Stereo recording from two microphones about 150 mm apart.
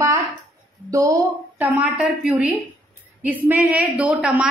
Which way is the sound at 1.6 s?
10° right (ahead or behind).